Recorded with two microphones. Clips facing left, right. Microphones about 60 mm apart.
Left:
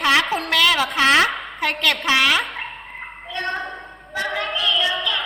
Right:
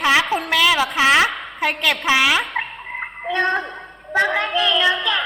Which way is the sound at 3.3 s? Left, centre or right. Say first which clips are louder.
Right 6 dB; right.